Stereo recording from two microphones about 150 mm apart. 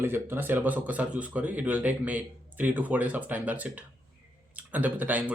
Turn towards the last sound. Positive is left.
turn(degrees=-10)  # may be behind; listen again after turning